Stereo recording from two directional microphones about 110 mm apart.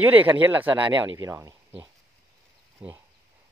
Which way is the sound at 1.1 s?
30° right (ahead or behind).